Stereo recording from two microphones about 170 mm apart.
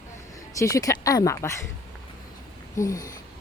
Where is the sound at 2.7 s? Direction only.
20° left (ahead or behind).